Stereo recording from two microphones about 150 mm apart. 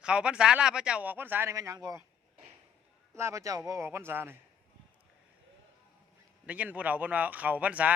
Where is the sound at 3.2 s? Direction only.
20° right (ahead or behind).